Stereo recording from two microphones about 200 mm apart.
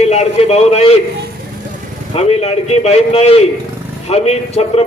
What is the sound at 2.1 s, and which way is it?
A man's voice, 30° left (ahead or behind).